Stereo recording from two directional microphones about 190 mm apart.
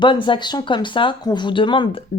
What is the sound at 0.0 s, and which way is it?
Speech, 25° left (ahead or behind).